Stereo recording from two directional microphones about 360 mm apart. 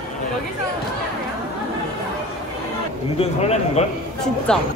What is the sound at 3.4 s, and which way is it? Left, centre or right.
Speech, centre.